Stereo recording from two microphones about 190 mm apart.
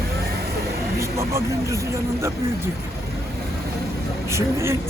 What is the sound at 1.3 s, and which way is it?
Speech, 15° right (ahead or behind).